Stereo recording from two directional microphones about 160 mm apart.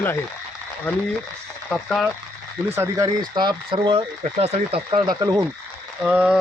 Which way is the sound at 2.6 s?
15° right (ahead or behind).